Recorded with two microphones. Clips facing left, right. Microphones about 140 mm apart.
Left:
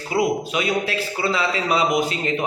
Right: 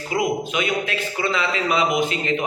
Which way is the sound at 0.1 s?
35° left (ahead or behind).